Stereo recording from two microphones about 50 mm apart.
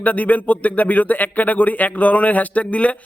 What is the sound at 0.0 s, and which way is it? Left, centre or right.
Speech, left.